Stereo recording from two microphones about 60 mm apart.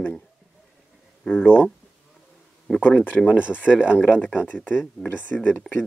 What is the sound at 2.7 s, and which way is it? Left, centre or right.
Speech, centre.